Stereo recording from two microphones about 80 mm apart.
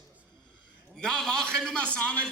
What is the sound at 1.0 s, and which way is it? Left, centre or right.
A man's voice, centre.